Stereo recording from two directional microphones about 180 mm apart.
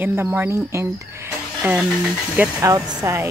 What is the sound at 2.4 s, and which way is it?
Speech, 15° right (ahead or behind).